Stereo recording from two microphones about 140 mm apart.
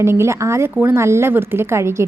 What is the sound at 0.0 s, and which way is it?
A woman's voice, 20° right (ahead or behind).